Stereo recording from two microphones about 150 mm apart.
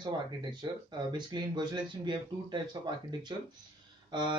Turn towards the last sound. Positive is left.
turn(degrees=-30)  # may be behind; listen again after turning